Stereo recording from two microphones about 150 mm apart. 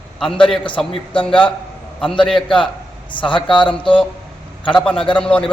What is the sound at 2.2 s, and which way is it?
Speech, 5° left (ahead or behind).